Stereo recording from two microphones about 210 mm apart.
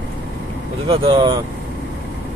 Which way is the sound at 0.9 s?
25° right (ahead or behind).